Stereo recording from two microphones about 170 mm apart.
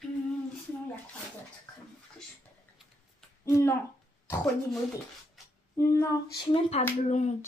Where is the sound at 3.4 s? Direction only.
15° left (ahead or behind).